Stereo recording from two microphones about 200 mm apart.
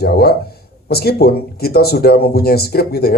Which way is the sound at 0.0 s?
50° left (ahead or behind).